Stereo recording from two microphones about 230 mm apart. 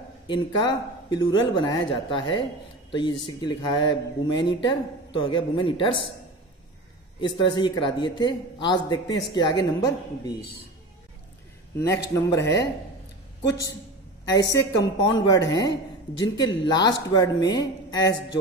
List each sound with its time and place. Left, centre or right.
0.3 s speech: centre
7.2 s speech: left
11.9 s speech: centre